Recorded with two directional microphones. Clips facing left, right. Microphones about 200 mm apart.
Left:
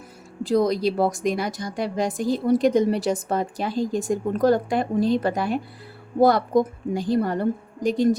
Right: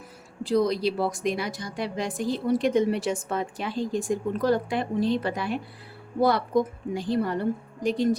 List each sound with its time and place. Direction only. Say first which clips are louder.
0.4 s a woman's voice: left 3 dB; 45° left (ahead or behind)